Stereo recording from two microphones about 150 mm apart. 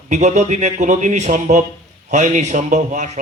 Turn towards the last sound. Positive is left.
turn(degrees=-55)  # may be behind; listen again after turning